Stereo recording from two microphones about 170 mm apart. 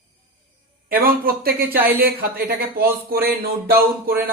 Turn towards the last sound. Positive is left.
turn(degrees=-60)  # may be behind; listen again after turning